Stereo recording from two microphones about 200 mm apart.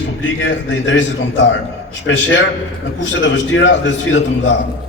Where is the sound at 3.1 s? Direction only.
65° left (ahead or behind).